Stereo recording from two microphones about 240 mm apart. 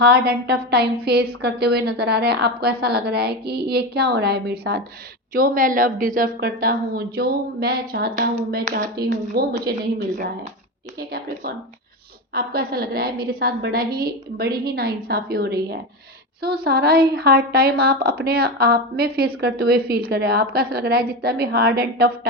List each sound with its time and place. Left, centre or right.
0.0 s a woman's voice: right
12.3 s a woman's voice: right